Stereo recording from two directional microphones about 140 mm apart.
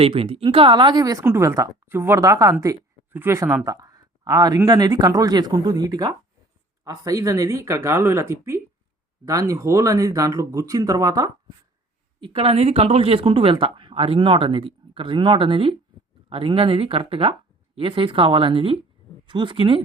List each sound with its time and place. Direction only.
0.0 s speech: 40° right (ahead or behind)
1.2 s speech: 20° right (ahead or behind)
12.2 s speech: 40° right (ahead or behind)